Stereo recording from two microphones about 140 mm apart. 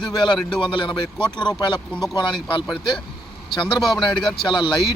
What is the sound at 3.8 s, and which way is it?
Speech, centre (ahead or behind).